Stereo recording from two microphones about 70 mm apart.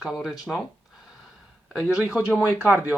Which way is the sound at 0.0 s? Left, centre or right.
Centre.